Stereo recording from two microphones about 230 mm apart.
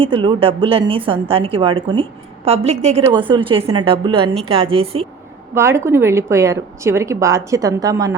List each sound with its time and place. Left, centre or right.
0.0 s a woman's voice: right
5.5 s a woman's voice: centre